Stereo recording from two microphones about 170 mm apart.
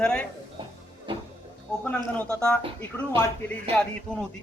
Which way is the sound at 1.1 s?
30° right (ahead or behind).